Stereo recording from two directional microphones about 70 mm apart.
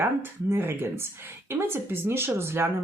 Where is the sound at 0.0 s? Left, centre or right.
Right.